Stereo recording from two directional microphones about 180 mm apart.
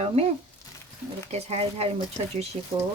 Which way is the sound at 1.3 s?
35° right (ahead or behind).